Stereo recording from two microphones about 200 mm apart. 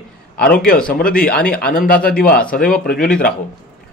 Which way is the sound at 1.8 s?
5° left (ahead or behind).